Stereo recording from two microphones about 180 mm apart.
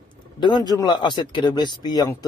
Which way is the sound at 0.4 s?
25° left (ahead or behind).